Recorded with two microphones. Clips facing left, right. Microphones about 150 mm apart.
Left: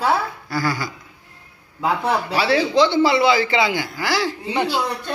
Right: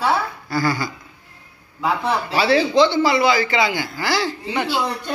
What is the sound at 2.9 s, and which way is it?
A man's voice, 25° left (ahead or behind).